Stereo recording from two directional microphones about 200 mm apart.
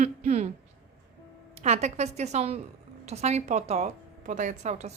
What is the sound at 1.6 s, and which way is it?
A woman's voice, 35° right (ahead or behind).